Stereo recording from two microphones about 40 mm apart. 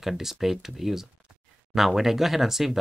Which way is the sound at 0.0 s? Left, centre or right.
Centre.